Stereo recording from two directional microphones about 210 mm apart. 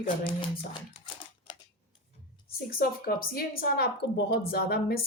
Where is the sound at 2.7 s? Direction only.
45° left (ahead or behind).